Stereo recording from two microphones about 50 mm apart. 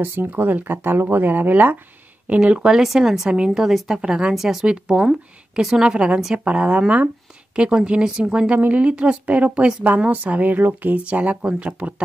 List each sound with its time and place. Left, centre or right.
0.0 s speech: right
0.3 s speech: right
2.2 s a woman's voice: right
8.5 s a woman's voice: right